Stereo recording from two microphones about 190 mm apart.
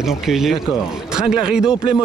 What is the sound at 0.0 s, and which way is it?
Speech, centre (ahead or behind).